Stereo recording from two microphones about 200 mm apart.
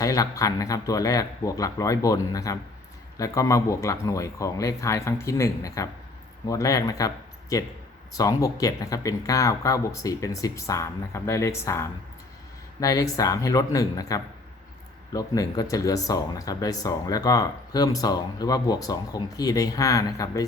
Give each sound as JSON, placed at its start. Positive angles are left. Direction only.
{"t": 0.0, "sound": "speech", "side_deg": 15}
{"t": 8.1, "sound": "speech", "side_deg": 15}